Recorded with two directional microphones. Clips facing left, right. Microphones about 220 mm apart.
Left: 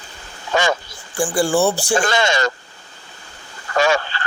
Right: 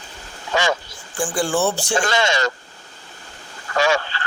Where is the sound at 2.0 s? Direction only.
50° left (ahead or behind).